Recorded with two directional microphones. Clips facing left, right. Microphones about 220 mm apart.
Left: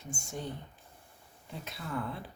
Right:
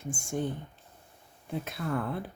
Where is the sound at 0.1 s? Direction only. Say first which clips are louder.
Right 7 dB; 50° right (ahead or behind).